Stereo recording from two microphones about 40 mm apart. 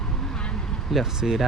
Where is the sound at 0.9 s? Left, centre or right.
Centre.